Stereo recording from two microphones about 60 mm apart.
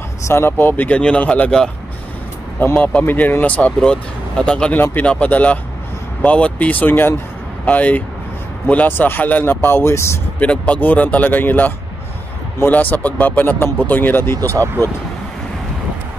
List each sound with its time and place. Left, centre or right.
0.2 s speech: left
2.7 s speech: left
3.1 s speech: left
3.8 s speech: centre; by 7.2 s left
7.6 s speech: left
8.8 s speech: left
10.4 s speech: left